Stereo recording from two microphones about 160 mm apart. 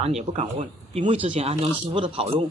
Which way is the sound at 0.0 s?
45° right (ahead or behind).